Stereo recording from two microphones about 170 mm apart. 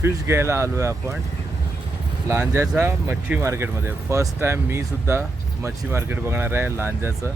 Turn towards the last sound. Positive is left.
turn(degrees=-15)  # may be behind; listen again after turning